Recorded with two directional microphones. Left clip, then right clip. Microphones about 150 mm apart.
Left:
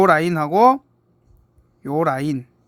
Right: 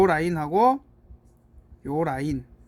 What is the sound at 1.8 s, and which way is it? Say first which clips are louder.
Speech: left 6 dB; 30° left (ahead or behind).